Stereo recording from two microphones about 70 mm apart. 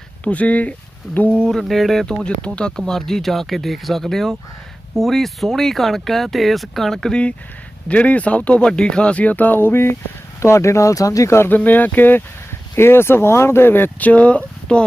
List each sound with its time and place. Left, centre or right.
0.3 s speech: centre
1.5 s speech: centre
2.0 s speech: centre; by 11.4 s left
11.4 s speech: left